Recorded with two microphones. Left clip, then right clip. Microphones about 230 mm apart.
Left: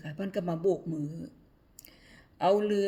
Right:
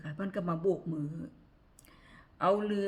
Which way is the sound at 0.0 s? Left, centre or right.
Centre.